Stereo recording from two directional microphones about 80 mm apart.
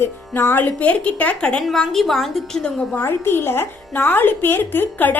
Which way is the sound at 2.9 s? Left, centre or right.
Left.